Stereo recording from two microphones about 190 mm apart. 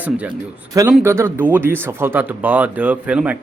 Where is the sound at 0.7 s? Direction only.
15° right (ahead or behind).